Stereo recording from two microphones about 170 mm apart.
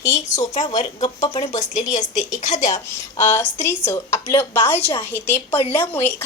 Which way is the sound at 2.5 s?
20° left (ahead or behind).